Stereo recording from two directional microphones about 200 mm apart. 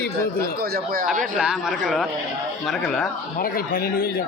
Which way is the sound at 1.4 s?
5° right (ahead or behind).